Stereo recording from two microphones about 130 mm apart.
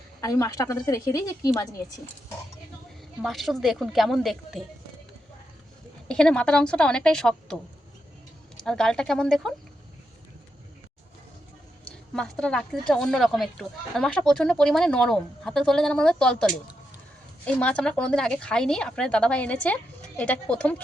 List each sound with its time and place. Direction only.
0.2 s a woman's voice: 25° left (ahead or behind)
3.2 s speech: centre (ahead or behind)
6.1 s speech: 5° left (ahead or behind)
8.6 s speech: 5° left (ahead or behind)
11.9 s a woman's voice: 5° left (ahead or behind)